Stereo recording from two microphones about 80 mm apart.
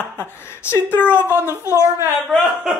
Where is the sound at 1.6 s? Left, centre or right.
Left.